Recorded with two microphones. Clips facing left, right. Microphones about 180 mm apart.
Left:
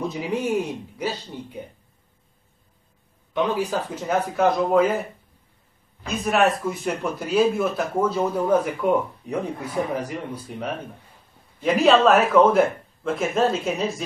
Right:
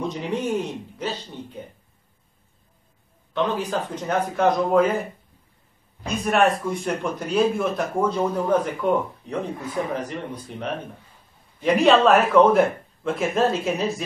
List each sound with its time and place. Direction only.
0.0 s speech: 5° left (ahead or behind)
3.3 s speech: 10° left (ahead or behind)
6.0 s speech: centre (ahead or behind)